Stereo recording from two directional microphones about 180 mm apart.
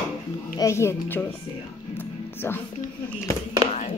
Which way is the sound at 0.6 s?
15° left (ahead or behind).